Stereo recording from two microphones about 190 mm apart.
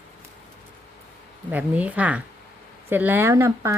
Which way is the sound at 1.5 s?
10° right (ahead or behind).